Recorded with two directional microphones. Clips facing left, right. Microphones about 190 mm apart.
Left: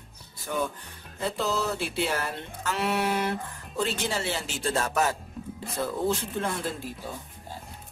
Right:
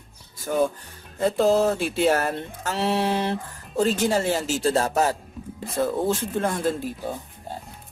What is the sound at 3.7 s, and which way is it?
Speech, 45° right (ahead or behind).